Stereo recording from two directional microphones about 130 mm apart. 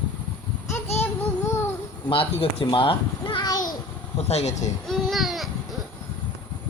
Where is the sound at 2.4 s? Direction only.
45° left (ahead or behind).